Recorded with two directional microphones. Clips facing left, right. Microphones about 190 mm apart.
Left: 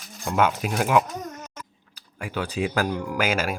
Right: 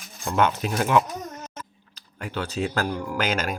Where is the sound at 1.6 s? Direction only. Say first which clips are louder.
Right 2 dB; 10° left (ahead or behind).